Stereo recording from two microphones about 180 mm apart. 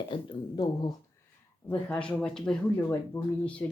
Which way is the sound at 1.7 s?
5° left (ahead or behind).